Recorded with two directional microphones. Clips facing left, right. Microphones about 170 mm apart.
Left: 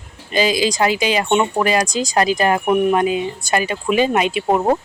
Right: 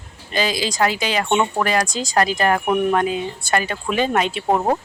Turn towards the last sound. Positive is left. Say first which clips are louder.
# left 3 dB
turn(degrees=5)  # may be behind; listen again after turning